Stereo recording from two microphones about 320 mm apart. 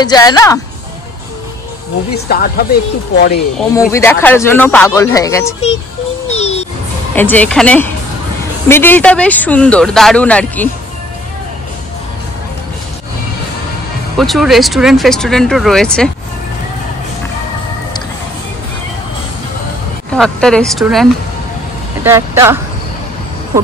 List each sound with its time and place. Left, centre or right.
0.0 s speech: centre
2.1 s speech: left
3.5 s speech: centre
6.3 s music: centre
7.2 s speech: centre
14.1 s speech: centre
20.2 s speech: centre